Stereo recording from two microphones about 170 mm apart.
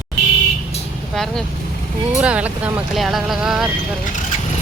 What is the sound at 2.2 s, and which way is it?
Speech, 10° right (ahead or behind).